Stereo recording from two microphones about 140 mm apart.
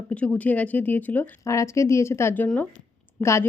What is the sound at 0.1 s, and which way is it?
Speech, 10° left (ahead or behind).